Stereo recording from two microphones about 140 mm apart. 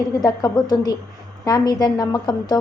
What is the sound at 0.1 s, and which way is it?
A woman's voice, 25° left (ahead or behind).